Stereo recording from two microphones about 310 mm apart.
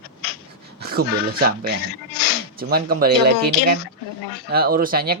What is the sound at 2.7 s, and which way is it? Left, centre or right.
Speech, right.